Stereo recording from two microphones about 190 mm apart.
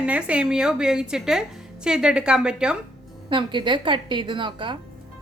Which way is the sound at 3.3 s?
25° right (ahead or behind).